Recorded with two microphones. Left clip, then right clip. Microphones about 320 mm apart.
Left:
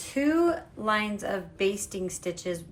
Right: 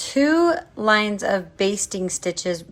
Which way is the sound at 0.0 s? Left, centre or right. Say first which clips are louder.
Right 7 dB; right.